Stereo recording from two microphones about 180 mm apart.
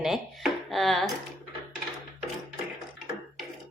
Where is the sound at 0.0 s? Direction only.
Centre (ahead or behind).